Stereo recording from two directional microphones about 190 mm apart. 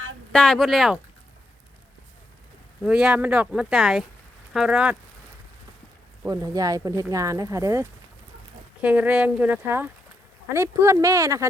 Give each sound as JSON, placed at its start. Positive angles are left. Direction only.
{"t": 0.3, "sound": "speech", "side_deg": 5}
{"t": 2.8, "sound": "speech", "side_deg": -5}
{"t": 6.2, "sound": "speech", "side_deg": -20}